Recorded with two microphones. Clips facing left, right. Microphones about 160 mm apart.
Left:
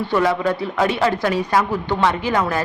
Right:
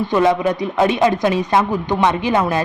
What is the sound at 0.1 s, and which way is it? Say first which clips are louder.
A woman's voice: right 3 dB; 20° right (ahead or behind).